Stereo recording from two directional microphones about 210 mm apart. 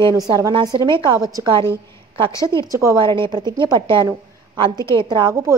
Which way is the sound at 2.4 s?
15° left (ahead or behind).